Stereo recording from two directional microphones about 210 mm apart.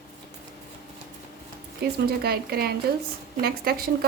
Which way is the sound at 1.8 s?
50° right (ahead or behind).